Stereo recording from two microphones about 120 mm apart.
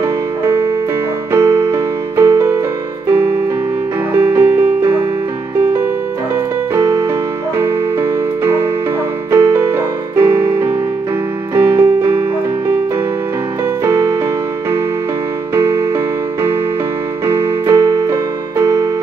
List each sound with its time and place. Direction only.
1.3 s keyboard: 20° right (ahead or behind)
3.1 s music: 20° right (ahead or behind)
6.7 s keyboard: 25° right (ahead or behind)
7.5 s music: 20° right (ahead or behind)
13.8 s music: 20° right (ahead or behind)
17.3 s keyboard: 20° right (ahead or behind)